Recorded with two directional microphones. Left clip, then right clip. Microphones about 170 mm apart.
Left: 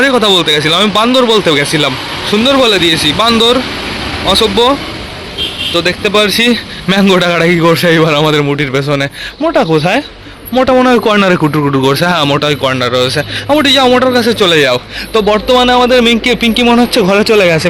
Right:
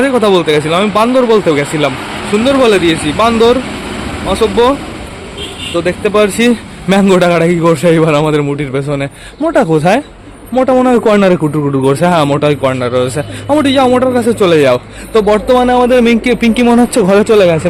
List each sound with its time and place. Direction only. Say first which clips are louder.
0.0 s a man's voice: left 1 dB; centre (ahead or behind)
5.7 s a man's voice: even; 5° right (ahead or behind)
11.3 s a man's voice: left 2 dB; 10° left (ahead or behind)
11.8 s a man's voice: right 2 dB; 5° right (ahead or behind)
15.5 s a man's voice: left 2 dB; 20° right (ahead or behind)
17.0 s a man's voice: right 2 dB; 10° right (ahead or behind)